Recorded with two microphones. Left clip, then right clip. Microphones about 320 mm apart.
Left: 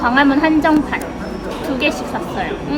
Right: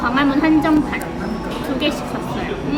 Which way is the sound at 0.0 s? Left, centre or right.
Left.